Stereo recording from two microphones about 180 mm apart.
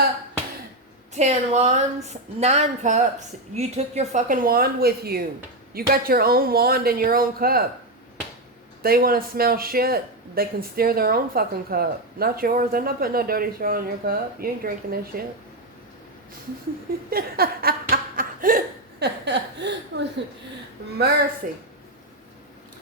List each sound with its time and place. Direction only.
1.1 s a woman's voice: 40° right (ahead or behind); by 7.6 s 55° right (ahead or behind)
8.8 s speech: 55° right (ahead or behind)
17.1 s a sound: 55° right (ahead or behind); by 20.1 s 75° right (ahead or behind)
21.4 s a woman's voice: 50° right (ahead or behind)